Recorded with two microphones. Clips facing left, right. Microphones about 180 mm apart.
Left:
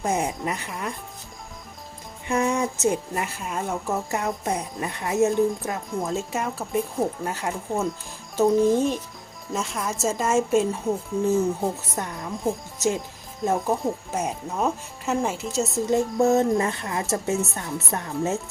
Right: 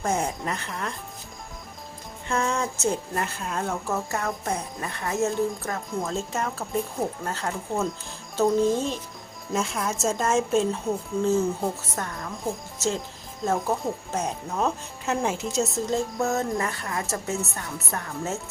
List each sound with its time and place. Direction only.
0.0 s a woman's voice: 15° left (ahead or behind)
2.2 s a woman's voice: 15° left (ahead or behind)
9.5 s a woman's voice: centre (ahead or behind); by 12.3 s 15° left (ahead or behind)
13.4 s a woman's voice: 10° left (ahead or behind)
15.9 s a woman's voice: 20° left (ahead or behind)